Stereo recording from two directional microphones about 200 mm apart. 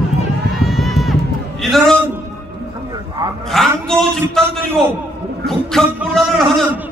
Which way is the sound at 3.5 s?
5° left (ahead or behind).